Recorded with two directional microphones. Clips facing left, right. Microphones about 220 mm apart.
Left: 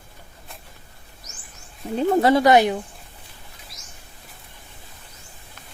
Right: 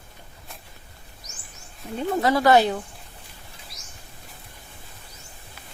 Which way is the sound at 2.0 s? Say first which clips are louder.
Left 5 dB; 25° left (ahead or behind).